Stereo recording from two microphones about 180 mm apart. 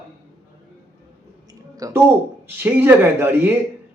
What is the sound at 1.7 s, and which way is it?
Speech, 20° right (ahead or behind).